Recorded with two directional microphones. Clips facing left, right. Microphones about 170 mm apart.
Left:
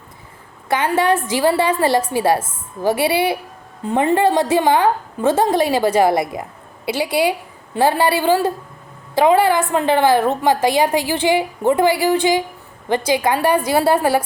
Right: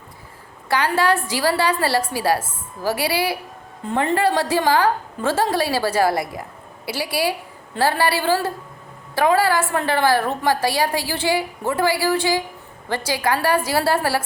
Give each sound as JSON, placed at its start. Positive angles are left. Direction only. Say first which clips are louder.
{"t": 0.7, "sound": "a woman's voice", "louder": "left 2 dB", "side_deg": 20}